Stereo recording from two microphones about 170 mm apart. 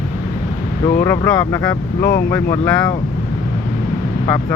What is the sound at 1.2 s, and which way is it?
Speech, 20° left (ahead or behind).